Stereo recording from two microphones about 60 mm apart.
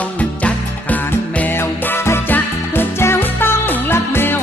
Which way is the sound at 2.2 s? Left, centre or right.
Left.